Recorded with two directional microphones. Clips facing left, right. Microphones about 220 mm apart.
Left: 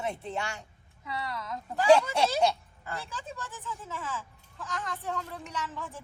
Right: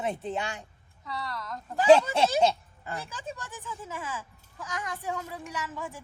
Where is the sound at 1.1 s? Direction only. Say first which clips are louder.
Left 1 dB; centre (ahead or behind).